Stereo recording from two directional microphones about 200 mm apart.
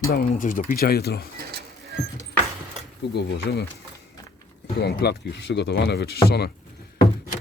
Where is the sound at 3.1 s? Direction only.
60° left (ahead or behind).